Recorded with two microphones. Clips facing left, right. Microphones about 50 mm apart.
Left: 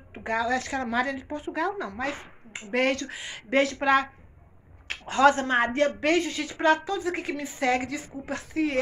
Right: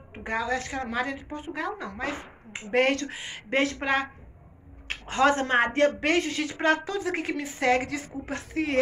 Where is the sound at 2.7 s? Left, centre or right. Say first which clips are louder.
Right 2 dB; right.